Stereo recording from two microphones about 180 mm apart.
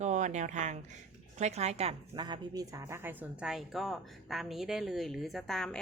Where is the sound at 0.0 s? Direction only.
40° right (ahead or behind).